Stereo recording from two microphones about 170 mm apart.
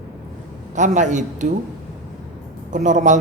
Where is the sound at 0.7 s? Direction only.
45° right (ahead or behind).